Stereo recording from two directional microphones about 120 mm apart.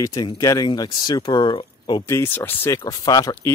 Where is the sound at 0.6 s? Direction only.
40° left (ahead or behind).